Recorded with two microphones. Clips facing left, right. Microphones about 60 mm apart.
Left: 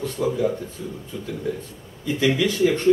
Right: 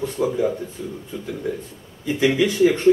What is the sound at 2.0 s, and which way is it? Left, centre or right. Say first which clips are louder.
Speech: right 2 dB; right.